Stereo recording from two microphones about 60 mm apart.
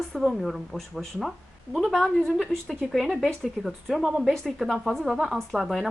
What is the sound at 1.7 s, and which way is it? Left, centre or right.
A woman's voice, centre.